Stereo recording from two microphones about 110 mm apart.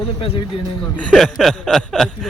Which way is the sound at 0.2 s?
50° left (ahead or behind).